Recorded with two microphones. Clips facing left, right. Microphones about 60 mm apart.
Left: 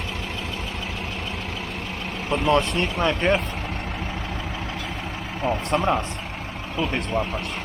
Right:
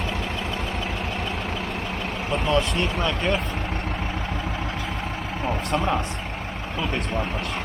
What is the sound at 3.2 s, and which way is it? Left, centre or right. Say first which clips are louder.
Speech: left 4 dB; left.